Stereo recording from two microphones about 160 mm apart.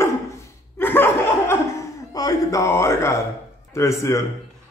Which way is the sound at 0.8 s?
15° left (ahead or behind).